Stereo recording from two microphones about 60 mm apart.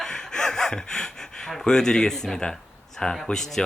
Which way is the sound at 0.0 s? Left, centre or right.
Centre.